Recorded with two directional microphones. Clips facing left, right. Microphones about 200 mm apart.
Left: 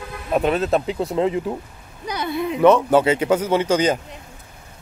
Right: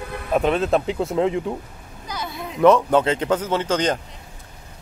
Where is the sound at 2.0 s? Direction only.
60° left (ahead or behind).